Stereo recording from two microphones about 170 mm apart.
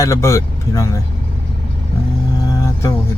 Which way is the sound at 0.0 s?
15° left (ahead or behind).